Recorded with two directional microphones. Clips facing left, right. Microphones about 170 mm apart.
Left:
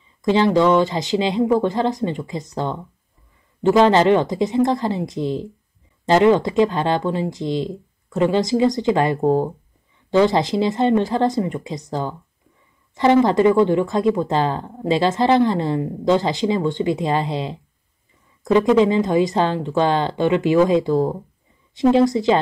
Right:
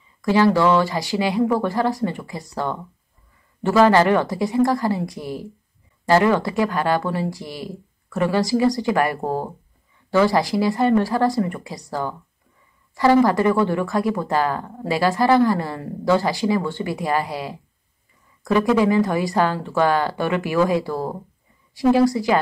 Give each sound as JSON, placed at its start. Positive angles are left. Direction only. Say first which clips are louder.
{"t": 0.2, "sound": "speech", "louder": "left 1 dB", "side_deg": 20}